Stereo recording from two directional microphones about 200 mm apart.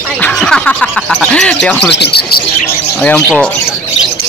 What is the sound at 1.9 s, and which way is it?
Speech, 55° left (ahead or behind).